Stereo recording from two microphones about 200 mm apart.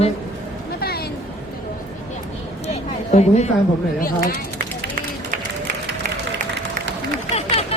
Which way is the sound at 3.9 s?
45° left (ahead or behind).